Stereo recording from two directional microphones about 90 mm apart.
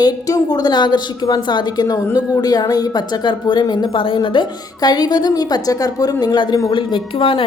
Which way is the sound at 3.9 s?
70° left (ahead or behind).